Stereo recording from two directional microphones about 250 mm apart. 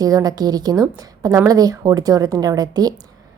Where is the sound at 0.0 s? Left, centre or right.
Centre.